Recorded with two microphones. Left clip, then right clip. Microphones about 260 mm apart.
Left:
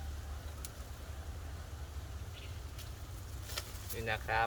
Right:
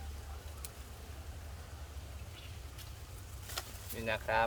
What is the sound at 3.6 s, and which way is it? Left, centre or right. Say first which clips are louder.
Vehicle: right 1 dB; centre.